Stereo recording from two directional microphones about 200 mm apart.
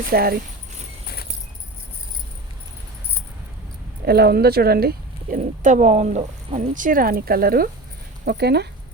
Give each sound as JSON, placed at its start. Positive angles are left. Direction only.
{"t": 0.1, "sound": "a woman's voice", "side_deg": -50}
{"t": 4.0, "sound": "a woman's voice", "side_deg": -50}